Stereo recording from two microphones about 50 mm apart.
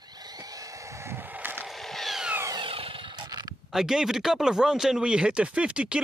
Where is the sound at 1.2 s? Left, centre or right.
Right.